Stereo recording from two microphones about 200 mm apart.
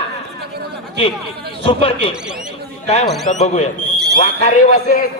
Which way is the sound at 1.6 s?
25° left (ahead or behind).